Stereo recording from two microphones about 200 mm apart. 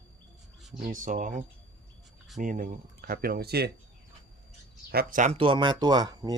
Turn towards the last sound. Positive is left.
turn(degrees=-20)  # may be behind; listen again after turning